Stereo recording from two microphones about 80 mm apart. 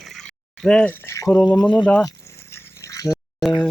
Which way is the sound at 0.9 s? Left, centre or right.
Left.